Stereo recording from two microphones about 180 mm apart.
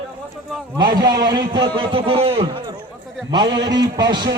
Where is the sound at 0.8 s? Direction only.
25° right (ahead or behind).